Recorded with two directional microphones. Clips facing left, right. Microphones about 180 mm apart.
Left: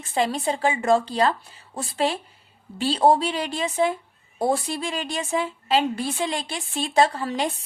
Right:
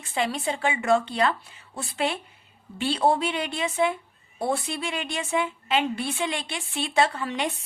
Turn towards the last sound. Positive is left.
turn(degrees=35)  # may be behind; listen again after turning